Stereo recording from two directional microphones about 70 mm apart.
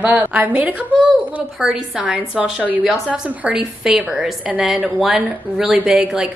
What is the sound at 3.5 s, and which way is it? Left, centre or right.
Speech, centre.